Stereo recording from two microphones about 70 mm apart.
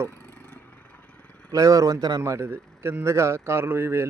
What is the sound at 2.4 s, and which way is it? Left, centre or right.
A man's voice, right.